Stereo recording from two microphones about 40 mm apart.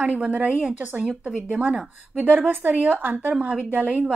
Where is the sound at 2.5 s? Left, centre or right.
Right.